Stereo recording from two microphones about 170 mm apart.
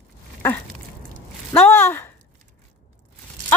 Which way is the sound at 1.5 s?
10° left (ahead or behind).